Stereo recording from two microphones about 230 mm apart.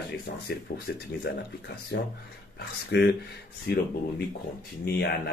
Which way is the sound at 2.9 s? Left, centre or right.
Left.